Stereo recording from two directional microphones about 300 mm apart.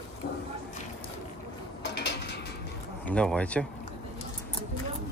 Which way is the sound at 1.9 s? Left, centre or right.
Left.